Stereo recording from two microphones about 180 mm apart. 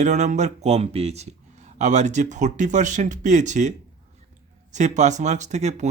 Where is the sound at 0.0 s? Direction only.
40° right (ahead or behind).